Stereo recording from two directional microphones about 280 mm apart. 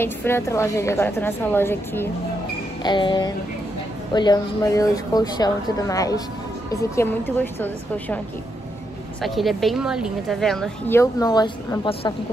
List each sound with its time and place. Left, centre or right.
0.0 s speech: centre
9.2 s speech: centre